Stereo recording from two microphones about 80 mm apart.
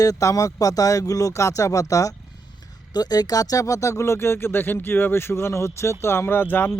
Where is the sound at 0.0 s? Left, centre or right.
Left.